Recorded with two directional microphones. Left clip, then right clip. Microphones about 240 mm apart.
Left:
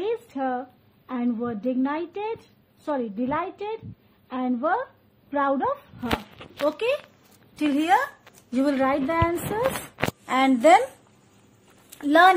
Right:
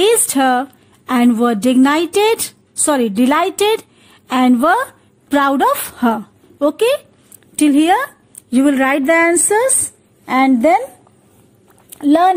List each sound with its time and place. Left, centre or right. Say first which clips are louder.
0.0 s a woman's voice: right 15 dB; right
6.6 s a woman's voice: right 10 dB; right
10.2 s a woman's voice: right 6 dB; centre
12.0 s a woman's voice: right 4 dB; centre